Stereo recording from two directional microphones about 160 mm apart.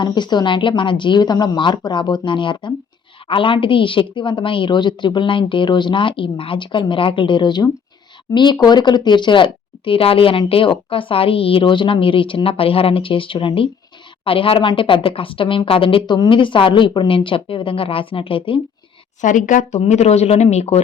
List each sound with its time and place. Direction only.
0.0 s a woman's voice: 30° left (ahead or behind)
19.2 s speech: 50° left (ahead or behind)